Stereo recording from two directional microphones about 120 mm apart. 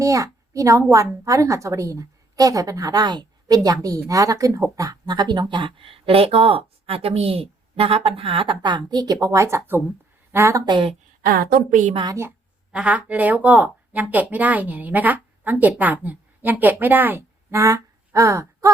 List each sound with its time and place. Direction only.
0.0 s a woman's voice: 30° right (ahead or behind)
9.2 s a woman's voice: 25° right (ahead or behind)
10.7 s speech: 45° right (ahead or behind)
11.7 s a woman's voice: 90° right
12.7 s speech: 10° right (ahead or behind); by 18.7 s 25° right (ahead or behind)